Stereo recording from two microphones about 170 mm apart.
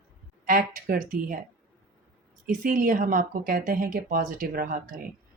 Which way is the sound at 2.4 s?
55° right (ahead or behind).